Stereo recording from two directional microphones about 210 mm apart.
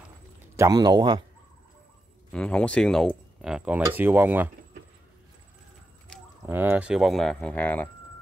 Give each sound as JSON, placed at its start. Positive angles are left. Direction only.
{"t": 0.4, "sound": "speech", "side_deg": -15}
{"t": 2.3, "sound": "speech", "side_deg": 5}
{"t": 6.4, "sound": "speech", "side_deg": -10}